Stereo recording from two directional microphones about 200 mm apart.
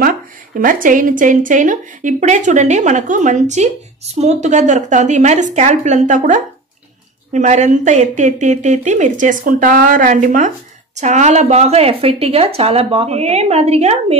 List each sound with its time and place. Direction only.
0.6 s a woman's voice: 45° right (ahead or behind)